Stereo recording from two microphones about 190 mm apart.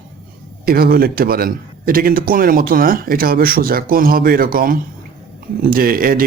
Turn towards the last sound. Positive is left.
turn(degrees=-50)  # may be behind; listen again after turning